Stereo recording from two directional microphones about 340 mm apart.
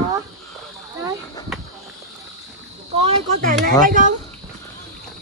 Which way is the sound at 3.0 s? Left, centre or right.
Right.